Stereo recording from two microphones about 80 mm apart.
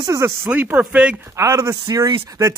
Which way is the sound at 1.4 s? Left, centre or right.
Right.